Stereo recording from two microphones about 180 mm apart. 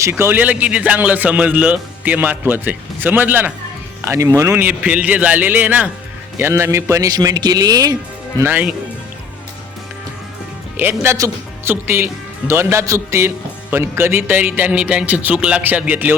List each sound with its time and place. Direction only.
0.0 s a man's voice: 10° right (ahead or behind)
11.0 s a man's voice: 15° right (ahead or behind)